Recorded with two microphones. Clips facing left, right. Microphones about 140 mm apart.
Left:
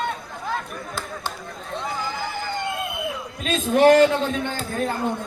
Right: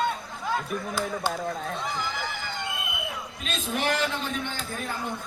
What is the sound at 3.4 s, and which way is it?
Speech, 50° left (ahead or behind).